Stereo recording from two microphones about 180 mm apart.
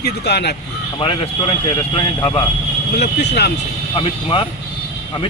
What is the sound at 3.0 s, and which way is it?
Speech, 65° left (ahead or behind).